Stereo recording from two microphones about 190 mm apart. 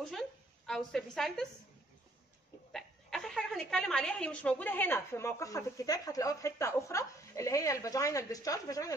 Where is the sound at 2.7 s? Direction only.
Centre (ahead or behind).